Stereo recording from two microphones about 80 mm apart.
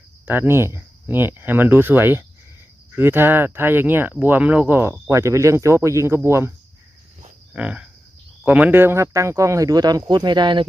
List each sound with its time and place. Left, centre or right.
0.3 s speech: right
7.5 s cricket: centre
8.4 s speech: centre; by 10.7 s right